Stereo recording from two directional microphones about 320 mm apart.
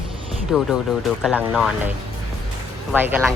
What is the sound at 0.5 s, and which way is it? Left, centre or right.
Speech, centre.